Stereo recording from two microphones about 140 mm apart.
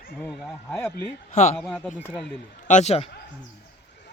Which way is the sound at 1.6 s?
Centre (ahead or behind).